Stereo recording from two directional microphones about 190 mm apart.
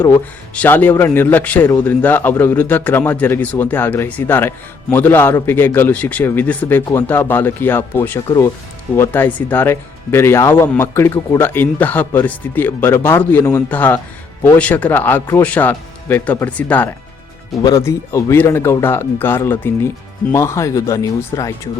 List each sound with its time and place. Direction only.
0.0 s speech: 10° left (ahead or behind)